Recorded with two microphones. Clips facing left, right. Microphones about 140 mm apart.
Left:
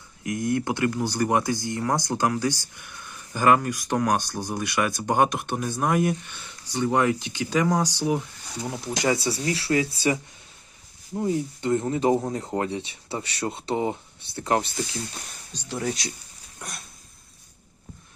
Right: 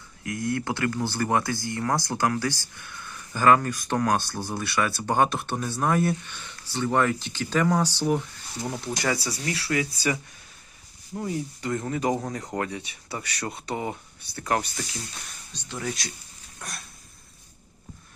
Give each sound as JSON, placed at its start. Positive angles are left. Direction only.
{"t": 0.2, "sound": "speech", "side_deg": 20}
{"t": 9.0, "sound": "speech", "side_deg": 25}
{"t": 15.7, "sound": "speech", "side_deg": 40}
{"t": 16.6, "sound": "a sound", "side_deg": 20}